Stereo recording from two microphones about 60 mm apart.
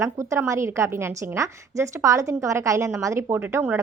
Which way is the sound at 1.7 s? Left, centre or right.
Right.